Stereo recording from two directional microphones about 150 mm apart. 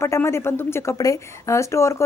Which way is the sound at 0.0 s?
15° left (ahead or behind).